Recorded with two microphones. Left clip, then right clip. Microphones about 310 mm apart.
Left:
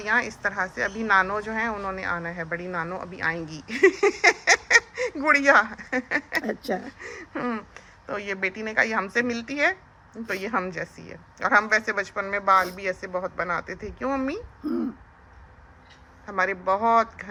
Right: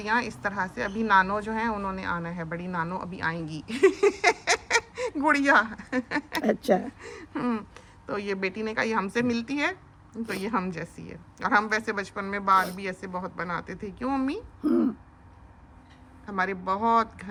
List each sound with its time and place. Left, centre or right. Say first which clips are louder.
0.0 s speech: left 3 dB; centre
14.6 s speech: right 5 dB; right
16.2 s speech: left 4 dB; centre